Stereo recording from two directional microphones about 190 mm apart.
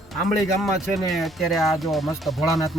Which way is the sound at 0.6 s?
Centre (ahead or behind).